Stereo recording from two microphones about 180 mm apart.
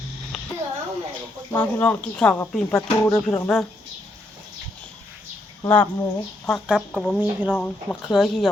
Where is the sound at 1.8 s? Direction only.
5° left (ahead or behind).